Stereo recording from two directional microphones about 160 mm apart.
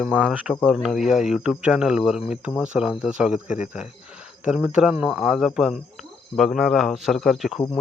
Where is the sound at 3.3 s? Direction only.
50° left (ahead or behind).